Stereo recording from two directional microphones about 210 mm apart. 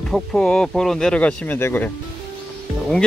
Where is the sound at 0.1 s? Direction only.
5° left (ahead or behind).